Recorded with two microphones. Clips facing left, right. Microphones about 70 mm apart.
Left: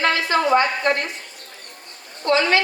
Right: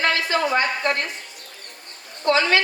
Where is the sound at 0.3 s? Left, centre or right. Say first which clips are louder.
Left 3 dB; left.